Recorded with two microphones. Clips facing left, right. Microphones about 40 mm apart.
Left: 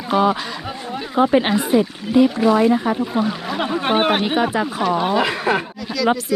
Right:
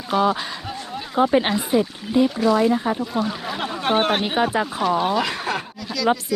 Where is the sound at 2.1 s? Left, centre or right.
Centre.